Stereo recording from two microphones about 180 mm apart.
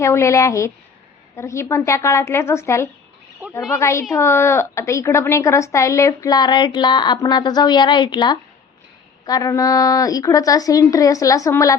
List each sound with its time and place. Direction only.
0.0 s a woman's voice: 15° left (ahead or behind)
3.4 s a sound: 10° right (ahead or behind)
3.8 s a woman's voice: 15° left (ahead or behind)